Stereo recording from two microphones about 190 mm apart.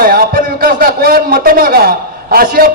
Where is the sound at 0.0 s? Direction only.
50° right (ahead or behind).